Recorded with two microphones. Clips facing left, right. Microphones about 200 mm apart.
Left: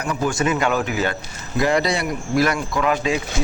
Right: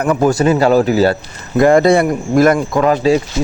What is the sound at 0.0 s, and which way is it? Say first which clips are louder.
Speech: right 10 dB; 55° right (ahead or behind).